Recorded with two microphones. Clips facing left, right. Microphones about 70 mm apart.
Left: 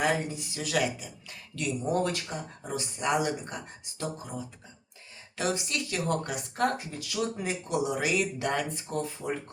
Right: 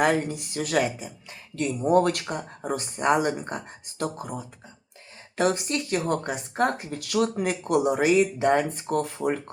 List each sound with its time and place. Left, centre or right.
0.0 s speech: right
0.8 s speech: right
6.7 s speech: right
8.0 s speech: right
8.7 s speech: right